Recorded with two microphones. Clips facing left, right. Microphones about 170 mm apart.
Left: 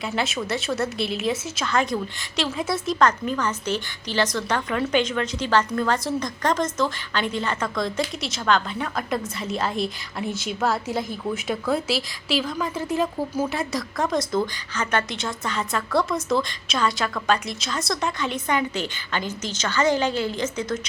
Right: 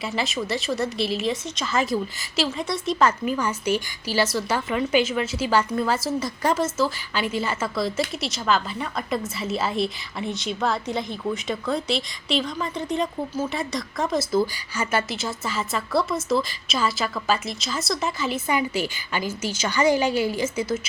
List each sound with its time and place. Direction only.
0.0 s a woman's voice: centre (ahead or behind)